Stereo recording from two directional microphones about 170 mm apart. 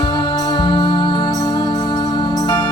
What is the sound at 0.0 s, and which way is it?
Music, 25° left (ahead or behind).